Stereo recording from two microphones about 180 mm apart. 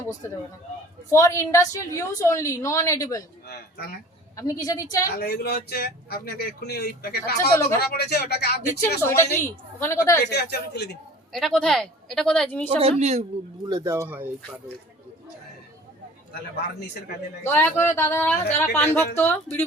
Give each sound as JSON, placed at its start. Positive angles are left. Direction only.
{"t": 1.1, "sound": "a woman's voice", "side_deg": 15}
{"t": 3.4, "sound": "speech", "side_deg": 60}
{"t": 4.4, "sound": "a woman's voice", "side_deg": 20}
{"t": 5.1, "sound": "speech", "side_deg": 60}
{"t": 9.0, "sound": "a woman's voice", "side_deg": 15}
{"t": 10.2, "sound": "speech", "side_deg": 65}
{"t": 11.3, "sound": "speech", "side_deg": 0}
{"t": 12.8, "sound": "speech", "side_deg": -35}
{"t": 13.7, "sound": "speech", "side_deg": -15}
{"t": 17.4, "sound": "a woman's voice", "side_deg": 10}